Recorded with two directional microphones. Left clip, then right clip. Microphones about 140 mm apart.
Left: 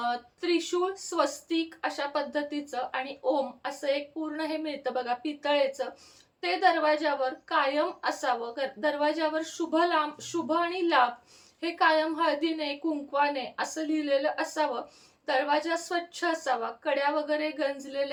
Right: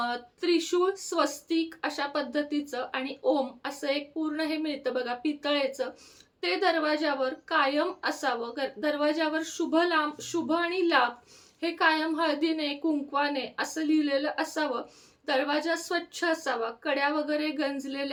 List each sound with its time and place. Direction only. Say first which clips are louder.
0.0 s speech: even; 30° right (ahead or behind)